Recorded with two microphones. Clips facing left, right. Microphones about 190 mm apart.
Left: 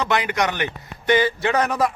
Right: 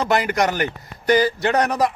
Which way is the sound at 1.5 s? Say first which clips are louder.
Right 1 dB; centre (ahead or behind).